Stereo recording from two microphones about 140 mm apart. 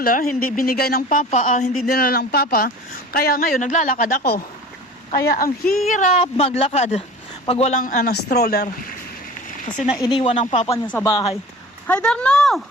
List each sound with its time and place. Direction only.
0.0 s a woman's voice: 85° left
5.9 s speech: 65° left (ahead or behind)
6.1 s speech: 45° left (ahead or behind)
7.8 s a woman's voice: 85° left
10.0 s speech: 35° left (ahead or behind)
10.2 s speech: 55° left (ahead or behind)
11.0 s speech: 25° left (ahead or behind)
11.9 s speech: 5° left (ahead or behind)